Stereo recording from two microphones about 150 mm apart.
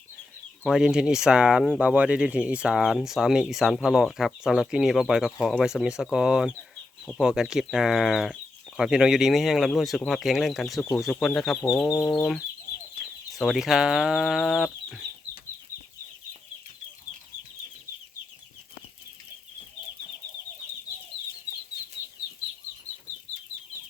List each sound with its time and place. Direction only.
0.6 s speech: 5° right (ahead or behind)
11.9 s chicken: 25° left (ahead or behind)
12.1 s speech: 5° left (ahead or behind)